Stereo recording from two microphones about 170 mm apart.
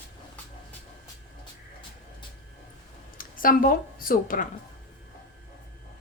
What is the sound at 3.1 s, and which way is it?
A woman's voice, 55° left (ahead or behind).